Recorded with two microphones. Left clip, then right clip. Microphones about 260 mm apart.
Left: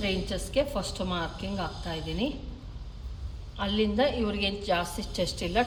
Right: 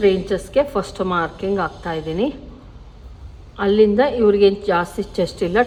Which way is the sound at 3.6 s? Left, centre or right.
Centre.